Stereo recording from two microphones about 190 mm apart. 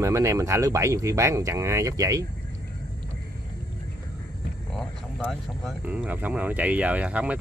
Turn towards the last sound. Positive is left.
turn(degrees=-5)  # may be behind; listen again after turning